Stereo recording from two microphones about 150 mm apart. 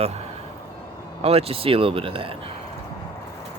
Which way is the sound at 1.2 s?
40° right (ahead or behind).